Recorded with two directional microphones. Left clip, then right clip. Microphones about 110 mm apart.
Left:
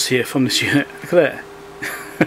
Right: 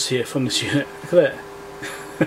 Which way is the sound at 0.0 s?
35° left (ahead or behind).